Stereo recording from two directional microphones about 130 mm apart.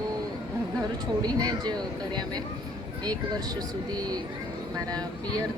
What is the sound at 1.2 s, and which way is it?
Speech, 30° right (ahead or behind).